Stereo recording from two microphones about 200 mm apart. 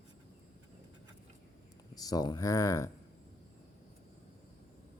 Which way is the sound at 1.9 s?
20° left (ahead or behind).